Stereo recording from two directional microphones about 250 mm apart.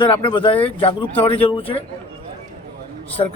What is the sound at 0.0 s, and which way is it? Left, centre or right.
Speech, centre.